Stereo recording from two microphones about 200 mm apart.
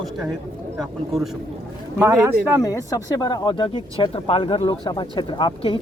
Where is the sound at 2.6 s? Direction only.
20° left (ahead or behind).